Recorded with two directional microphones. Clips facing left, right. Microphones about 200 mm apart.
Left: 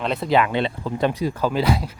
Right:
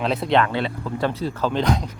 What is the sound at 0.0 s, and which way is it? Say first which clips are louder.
Speech: even; centre (ahead or behind).